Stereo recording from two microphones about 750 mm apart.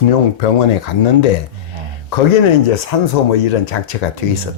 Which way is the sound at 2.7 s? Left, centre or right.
Left.